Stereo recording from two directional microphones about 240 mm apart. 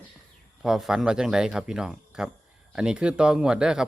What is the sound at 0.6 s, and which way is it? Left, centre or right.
Speech, centre.